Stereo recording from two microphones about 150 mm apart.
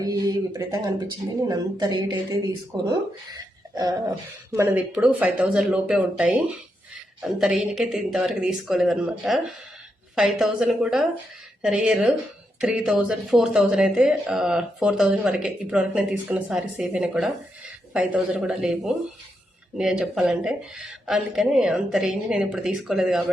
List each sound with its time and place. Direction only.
0.0 s speech: 25° right (ahead or behind)
4.5 s speech: 15° right (ahead or behind)